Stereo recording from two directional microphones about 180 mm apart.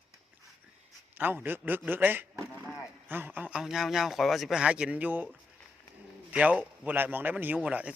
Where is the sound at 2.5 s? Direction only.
5° left (ahead or behind).